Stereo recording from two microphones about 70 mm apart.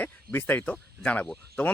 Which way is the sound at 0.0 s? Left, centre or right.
Left.